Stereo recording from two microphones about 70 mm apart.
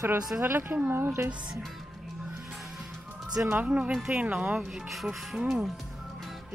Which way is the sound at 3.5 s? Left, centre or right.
Centre.